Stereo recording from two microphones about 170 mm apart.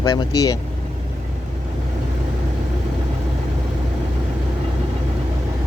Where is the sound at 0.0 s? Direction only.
25° left (ahead or behind).